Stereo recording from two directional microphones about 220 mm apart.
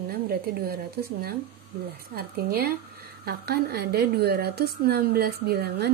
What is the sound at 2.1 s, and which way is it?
A woman's voice, 45° right (ahead or behind).